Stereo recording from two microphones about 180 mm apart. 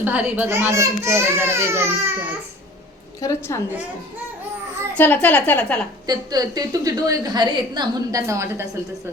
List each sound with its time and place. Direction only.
0.0 s a child's voice: 10° right (ahead or behind)
3.2 s a woman's voice: 15° left (ahead or behind)
4.9 s a woman's voice: 10° left (ahead or behind)
6.1 s a woman's voice: 20° right (ahead or behind)